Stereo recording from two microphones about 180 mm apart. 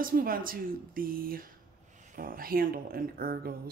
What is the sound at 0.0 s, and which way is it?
Speech, 50° right (ahead or behind).